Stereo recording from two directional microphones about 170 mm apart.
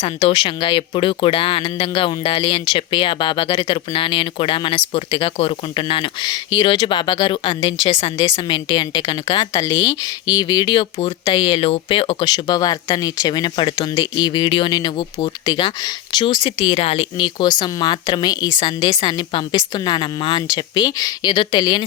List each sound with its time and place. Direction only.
0.0 s speech: 35° left (ahead or behind)